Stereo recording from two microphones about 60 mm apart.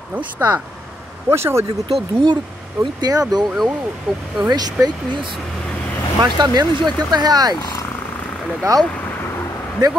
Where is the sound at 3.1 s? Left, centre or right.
Right.